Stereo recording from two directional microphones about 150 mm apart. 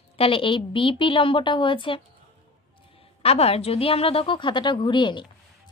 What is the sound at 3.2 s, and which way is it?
A woman's voice, 40° left (ahead or behind).